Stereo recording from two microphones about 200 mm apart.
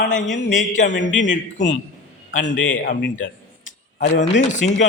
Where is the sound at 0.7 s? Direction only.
40° left (ahead or behind).